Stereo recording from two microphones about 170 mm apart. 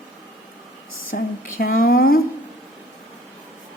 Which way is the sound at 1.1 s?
60° left (ahead or behind).